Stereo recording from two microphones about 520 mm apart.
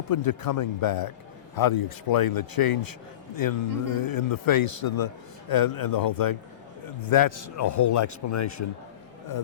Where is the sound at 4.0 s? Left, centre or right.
Left.